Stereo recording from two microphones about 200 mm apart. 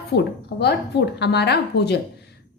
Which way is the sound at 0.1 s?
55° left (ahead or behind).